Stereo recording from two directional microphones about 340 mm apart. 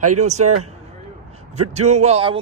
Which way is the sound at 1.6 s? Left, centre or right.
Centre.